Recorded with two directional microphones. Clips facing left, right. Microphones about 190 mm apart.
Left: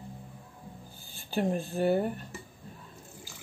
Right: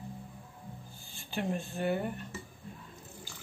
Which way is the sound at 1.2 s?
35° left (ahead or behind).